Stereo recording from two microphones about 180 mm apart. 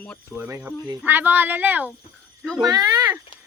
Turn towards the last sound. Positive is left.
turn(degrees=-20)  # may be behind; listen again after turning